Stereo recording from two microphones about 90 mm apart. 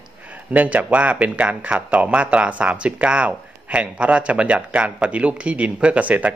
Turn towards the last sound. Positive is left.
turn(degrees=-15)  # may be behind; listen again after turning